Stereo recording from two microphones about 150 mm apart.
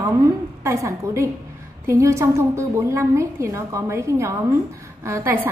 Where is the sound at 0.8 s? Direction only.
20° right (ahead or behind).